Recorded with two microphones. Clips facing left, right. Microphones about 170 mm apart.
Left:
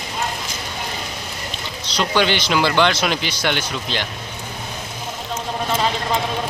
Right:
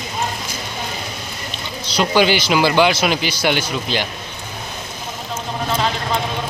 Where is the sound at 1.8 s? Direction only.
10° right (ahead or behind).